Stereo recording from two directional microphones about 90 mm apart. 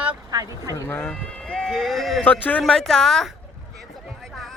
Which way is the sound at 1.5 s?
Centre (ahead or behind).